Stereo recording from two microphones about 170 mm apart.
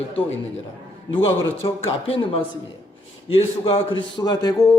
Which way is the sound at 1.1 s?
35° left (ahead or behind).